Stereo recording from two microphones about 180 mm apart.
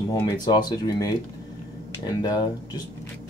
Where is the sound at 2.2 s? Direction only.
25° left (ahead or behind).